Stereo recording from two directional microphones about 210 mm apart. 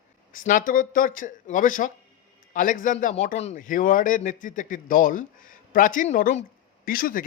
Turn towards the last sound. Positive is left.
turn(degrees=45)  # may be behind; listen again after turning